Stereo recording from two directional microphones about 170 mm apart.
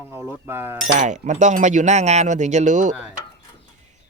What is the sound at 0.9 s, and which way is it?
Speech, 45° right (ahead or behind).